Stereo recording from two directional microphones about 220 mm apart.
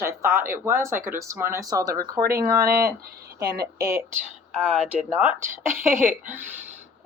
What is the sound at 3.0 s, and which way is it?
Speech, 45° right (ahead or behind).